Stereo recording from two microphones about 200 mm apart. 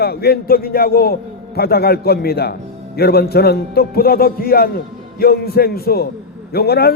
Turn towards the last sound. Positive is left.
turn(degrees=50)  # may be behind; listen again after turning